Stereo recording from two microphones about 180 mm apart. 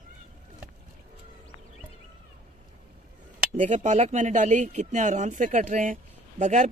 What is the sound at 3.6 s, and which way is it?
Speech, 40° right (ahead or behind).